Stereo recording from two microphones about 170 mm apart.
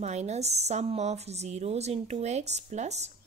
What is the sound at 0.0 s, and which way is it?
A woman's voice, 40° right (ahead or behind).